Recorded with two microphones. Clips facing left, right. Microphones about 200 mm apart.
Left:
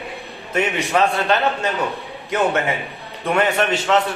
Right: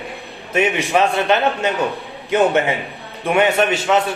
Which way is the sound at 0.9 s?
20° right (ahead or behind).